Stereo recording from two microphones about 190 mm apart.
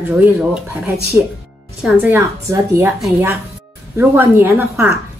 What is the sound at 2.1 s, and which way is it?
Speech, 15° right (ahead or behind).